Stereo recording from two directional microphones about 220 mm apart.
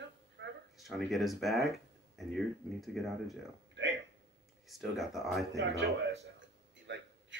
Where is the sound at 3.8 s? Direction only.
55° right (ahead or behind).